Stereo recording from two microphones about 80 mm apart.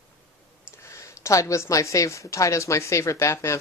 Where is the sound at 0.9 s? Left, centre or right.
Left.